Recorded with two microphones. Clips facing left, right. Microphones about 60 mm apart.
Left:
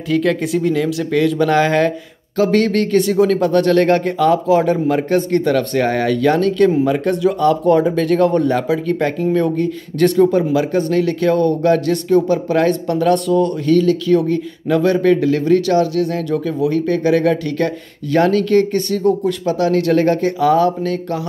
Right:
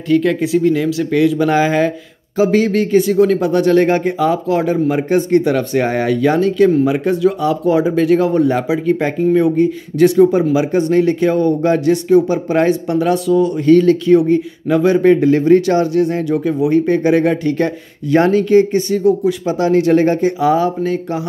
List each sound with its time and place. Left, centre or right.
0.1 s speech: centre
13.7 s speech: right
14.1 s speech: centre